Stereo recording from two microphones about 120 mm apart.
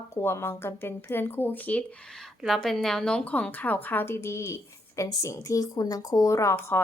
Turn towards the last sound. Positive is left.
turn(degrees=25)  # may be behind; listen again after turning